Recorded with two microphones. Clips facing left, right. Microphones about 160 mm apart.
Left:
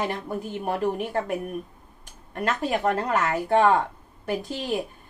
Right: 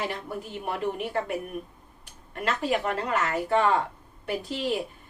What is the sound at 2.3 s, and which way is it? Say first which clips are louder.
A woman's voice: left 1 dB; 45° left (ahead or behind).